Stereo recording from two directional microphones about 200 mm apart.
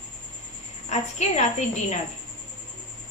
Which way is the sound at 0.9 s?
35° left (ahead or behind).